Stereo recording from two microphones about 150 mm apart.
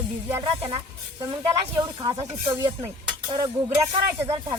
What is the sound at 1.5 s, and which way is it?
Speech, 30° right (ahead or behind).